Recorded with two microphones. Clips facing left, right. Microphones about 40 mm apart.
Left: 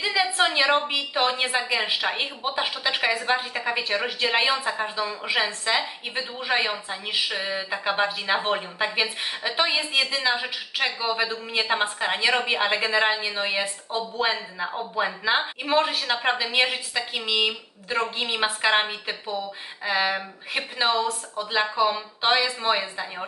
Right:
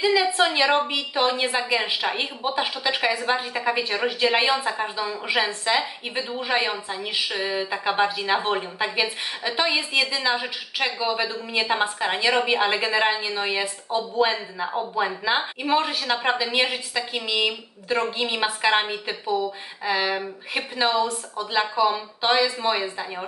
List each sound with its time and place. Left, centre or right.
0.0 s a woman's voice: centre
13.5 s speech: left
13.9 s a woman's voice: centre